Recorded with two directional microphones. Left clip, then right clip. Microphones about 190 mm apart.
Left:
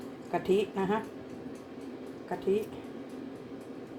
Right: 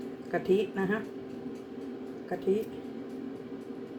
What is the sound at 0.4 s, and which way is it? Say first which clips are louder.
Speech: even; 15° left (ahead or behind).